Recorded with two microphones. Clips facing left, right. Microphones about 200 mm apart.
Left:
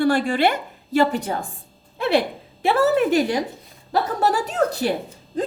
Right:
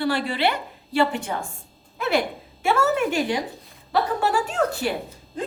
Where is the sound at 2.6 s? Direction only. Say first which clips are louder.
Left 4 dB; 35° left (ahead or behind).